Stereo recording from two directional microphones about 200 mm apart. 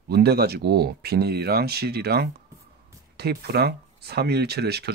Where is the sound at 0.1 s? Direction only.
50° right (ahead or behind).